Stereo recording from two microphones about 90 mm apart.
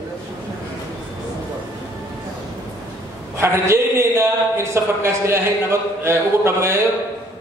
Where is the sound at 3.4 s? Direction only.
30° right (ahead or behind).